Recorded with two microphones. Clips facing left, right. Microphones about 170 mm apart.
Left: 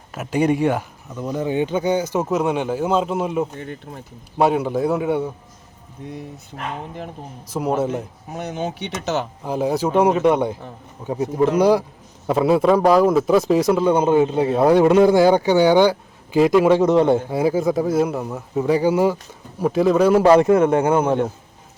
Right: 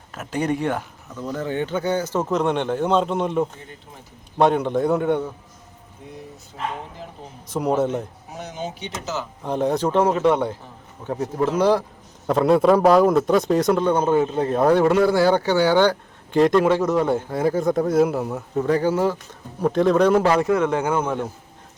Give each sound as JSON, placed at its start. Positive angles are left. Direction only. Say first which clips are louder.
{"t": 0.1, "sound": "a man's voice", "louder": "left 5 dB", "side_deg": 10}
{"t": 7.5, "sound": "speech", "louder": "even", "side_deg": 0}
{"t": 8.4, "sound": "speech", "louder": "left 5 dB", "side_deg": 60}
{"t": 9.4, "sound": "a man's voice", "louder": "right 3 dB", "side_deg": 5}
{"t": 17.2, "sound": "speech", "louder": "left 2 dB", "side_deg": 10}
{"t": 20.6, "sound": "speech", "louder": "left 5 dB", "side_deg": 50}
{"t": 20.8, "sound": "a man's voice", "louder": "left 5 dB", "side_deg": 25}